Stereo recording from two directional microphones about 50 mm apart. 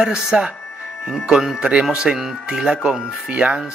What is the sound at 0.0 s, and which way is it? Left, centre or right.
Speech, centre.